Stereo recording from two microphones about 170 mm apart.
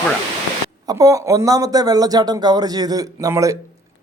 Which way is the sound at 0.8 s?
20° right (ahead or behind).